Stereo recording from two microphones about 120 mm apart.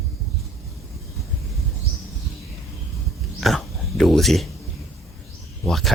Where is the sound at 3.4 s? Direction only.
5° left (ahead or behind).